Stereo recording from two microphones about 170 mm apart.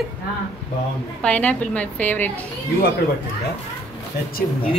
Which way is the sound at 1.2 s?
10° left (ahead or behind).